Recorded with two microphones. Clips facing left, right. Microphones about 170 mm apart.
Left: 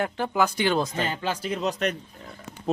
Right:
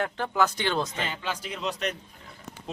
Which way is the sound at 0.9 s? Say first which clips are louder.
Left 5 dB; 40° left (ahead or behind).